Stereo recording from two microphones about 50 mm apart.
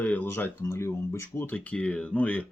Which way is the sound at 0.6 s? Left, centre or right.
Left.